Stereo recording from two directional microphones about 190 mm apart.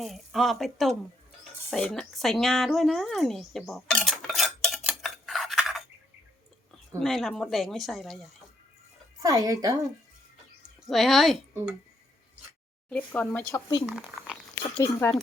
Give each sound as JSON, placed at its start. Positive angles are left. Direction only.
{"t": 0.0, "sound": "speech", "side_deg": 0}
{"t": 7.0, "sound": "speech", "side_deg": 0}
{"t": 9.2, "sound": "a woman's voice", "side_deg": -15}
{"t": 10.8, "sound": "speech", "side_deg": 0}
{"t": 12.9, "sound": "speech", "side_deg": 5}
{"t": 13.9, "sound": "speech", "side_deg": 0}
{"t": 14.6, "sound": "speech", "side_deg": 15}